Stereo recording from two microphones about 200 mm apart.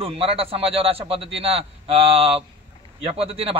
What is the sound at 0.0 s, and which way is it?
A man's voice, 30° right (ahead or behind).